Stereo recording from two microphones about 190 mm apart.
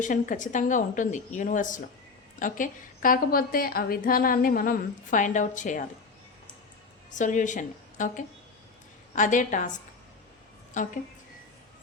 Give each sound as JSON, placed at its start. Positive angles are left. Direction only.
{"t": 0.0, "sound": "a woman's voice", "side_deg": 45}
{"t": 7.1, "sound": "a woman's voice", "side_deg": 40}